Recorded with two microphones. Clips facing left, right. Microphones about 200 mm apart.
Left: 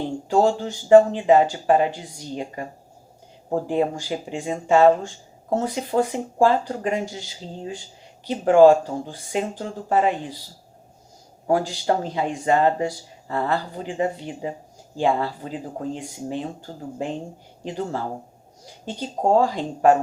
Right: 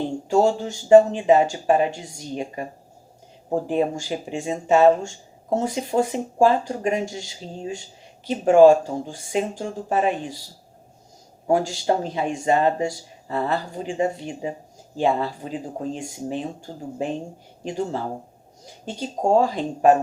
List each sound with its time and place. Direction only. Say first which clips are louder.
0.3 s speech: even; 15° right (ahead or behind)
11.4 s speech: right 1 dB; 25° right (ahead or behind)
19.0 s speech: even; 20° right (ahead or behind)